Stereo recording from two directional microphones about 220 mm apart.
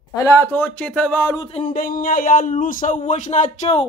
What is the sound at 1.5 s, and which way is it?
Speech, 35° left (ahead or behind).